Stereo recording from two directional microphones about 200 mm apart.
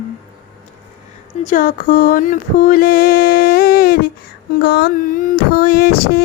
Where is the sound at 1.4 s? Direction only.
40° left (ahead or behind).